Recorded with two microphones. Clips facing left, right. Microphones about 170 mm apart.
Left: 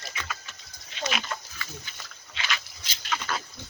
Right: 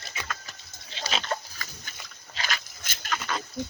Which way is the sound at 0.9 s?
30° right (ahead or behind).